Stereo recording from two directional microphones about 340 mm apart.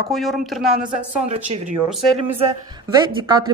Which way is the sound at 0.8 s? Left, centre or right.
Right.